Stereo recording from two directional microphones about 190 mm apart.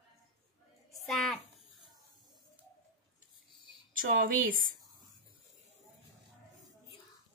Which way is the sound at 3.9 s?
45° right (ahead or behind).